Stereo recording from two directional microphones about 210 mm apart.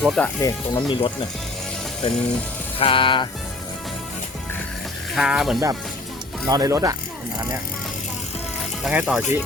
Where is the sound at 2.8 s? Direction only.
25° left (ahead or behind).